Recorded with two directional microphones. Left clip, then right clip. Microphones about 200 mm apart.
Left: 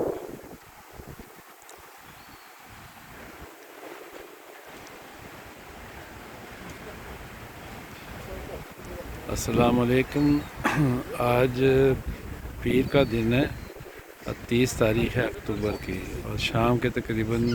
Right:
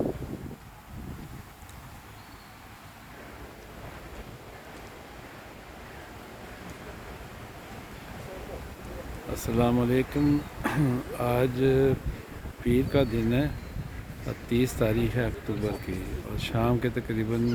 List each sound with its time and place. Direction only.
9.3 s speech: 5° right (ahead or behind)